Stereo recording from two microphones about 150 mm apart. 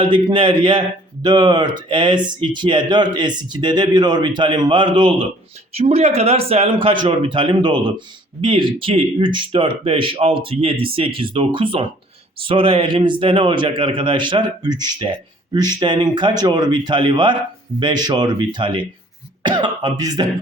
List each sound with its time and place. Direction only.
0.0 s a man's voice: 35° right (ahead or behind)
5.7 s a man's voice: 40° right (ahead or behind); by 20.2 s 25° right (ahead or behind)